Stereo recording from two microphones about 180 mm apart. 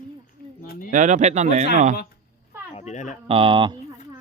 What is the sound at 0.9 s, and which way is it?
Speech, 45° right (ahead or behind).